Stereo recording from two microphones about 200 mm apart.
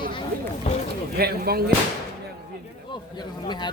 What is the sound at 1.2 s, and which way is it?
Speech, 50° right (ahead or behind).